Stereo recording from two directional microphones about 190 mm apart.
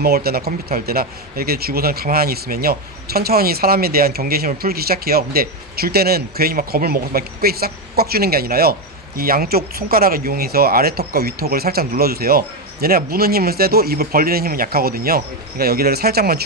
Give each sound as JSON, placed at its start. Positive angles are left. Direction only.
{"t": 0.0, "sound": "speech", "side_deg": -55}